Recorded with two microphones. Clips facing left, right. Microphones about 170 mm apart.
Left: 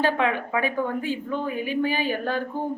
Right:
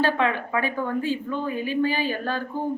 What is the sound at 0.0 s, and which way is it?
A woman's voice, 15° left (ahead or behind).